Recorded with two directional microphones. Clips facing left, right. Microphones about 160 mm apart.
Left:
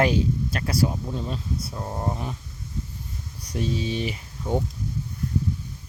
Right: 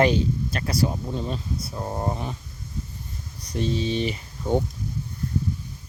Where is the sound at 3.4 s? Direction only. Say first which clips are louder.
Right 2 dB; 5° left (ahead or behind).